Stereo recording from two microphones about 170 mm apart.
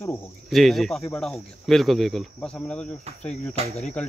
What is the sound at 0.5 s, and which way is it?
Speech, centre (ahead or behind).